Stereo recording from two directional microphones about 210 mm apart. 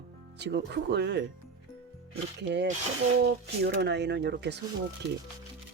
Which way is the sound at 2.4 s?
55° right (ahead or behind).